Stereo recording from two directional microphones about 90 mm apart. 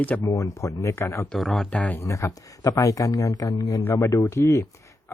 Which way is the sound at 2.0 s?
35° left (ahead or behind).